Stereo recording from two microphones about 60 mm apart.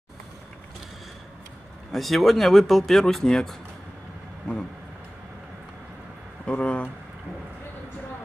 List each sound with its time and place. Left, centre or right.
1.9 s speech: centre
6.4 s speech: centre